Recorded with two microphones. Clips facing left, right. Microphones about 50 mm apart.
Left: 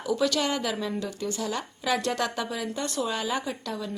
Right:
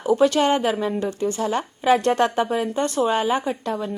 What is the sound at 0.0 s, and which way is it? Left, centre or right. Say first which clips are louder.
A woman's voice: right 8 dB; right.